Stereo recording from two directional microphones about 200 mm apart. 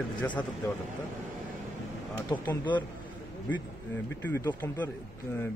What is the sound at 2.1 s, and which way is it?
Speech, 10° left (ahead or behind).